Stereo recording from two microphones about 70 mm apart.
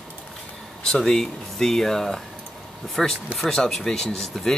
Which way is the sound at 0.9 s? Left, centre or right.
Centre.